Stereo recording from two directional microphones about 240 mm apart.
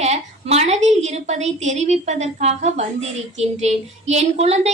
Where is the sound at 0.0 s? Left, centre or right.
Right.